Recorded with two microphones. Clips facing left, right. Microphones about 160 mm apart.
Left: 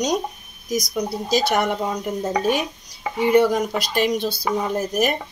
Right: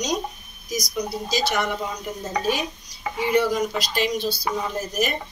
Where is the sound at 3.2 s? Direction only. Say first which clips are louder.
Left 4 dB; 50° left (ahead or behind).